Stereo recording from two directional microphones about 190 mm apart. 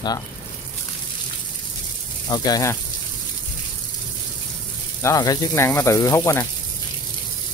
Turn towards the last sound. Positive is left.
turn(degrees=15)  # may be behind; listen again after turning